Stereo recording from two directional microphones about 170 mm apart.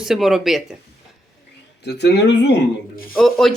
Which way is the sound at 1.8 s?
85° left.